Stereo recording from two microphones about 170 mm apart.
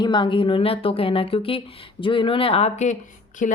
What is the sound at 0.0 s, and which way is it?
A woman's voice, 25° left (ahead or behind).